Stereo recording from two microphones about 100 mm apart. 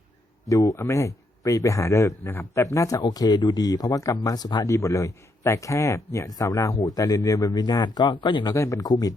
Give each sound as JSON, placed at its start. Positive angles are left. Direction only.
{"t": 0.4, "sound": "speech", "side_deg": 35}
{"t": 8.5, "sound": "speech", "side_deg": 30}